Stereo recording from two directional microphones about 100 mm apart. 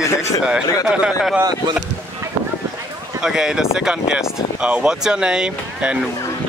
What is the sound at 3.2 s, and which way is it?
Speech, 5° right (ahead or behind).